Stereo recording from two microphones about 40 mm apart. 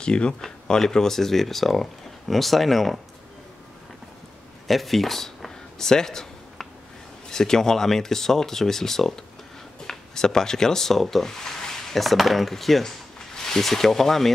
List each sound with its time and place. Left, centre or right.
0.0 s speech: left; by 3.0 s centre
4.6 s a sound: centre
7.2 s speech: centre